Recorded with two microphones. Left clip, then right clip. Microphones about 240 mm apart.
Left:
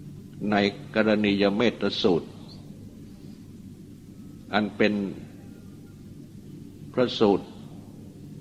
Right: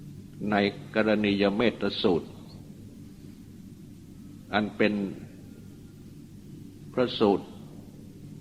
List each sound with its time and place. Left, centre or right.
0.4 s a man's voice: right
4.5 s a man's voice: right
6.9 s a man's voice: right